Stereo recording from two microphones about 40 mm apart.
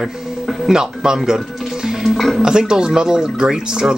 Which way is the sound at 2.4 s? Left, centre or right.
Centre.